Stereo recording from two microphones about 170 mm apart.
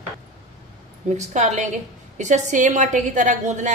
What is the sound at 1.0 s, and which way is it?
A woman's voice, 45° right (ahead or behind).